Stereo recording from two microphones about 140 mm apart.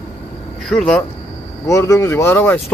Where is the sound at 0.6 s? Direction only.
5° left (ahead or behind).